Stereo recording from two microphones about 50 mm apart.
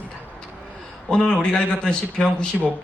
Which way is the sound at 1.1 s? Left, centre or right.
Centre.